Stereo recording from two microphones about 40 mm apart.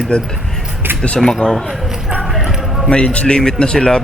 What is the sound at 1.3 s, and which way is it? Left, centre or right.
Speech, centre.